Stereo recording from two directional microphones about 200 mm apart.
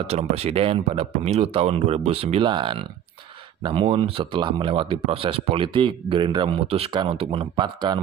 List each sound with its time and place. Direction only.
0.0 s speech: 30° right (ahead or behind)